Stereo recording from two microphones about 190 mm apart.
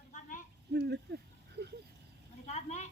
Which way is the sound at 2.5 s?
35° left (ahead or behind).